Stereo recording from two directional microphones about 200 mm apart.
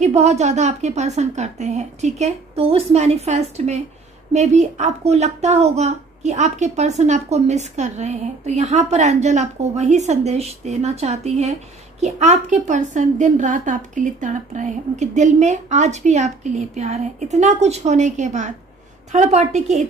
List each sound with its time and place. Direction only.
0.0 s speech: 35° right (ahead or behind)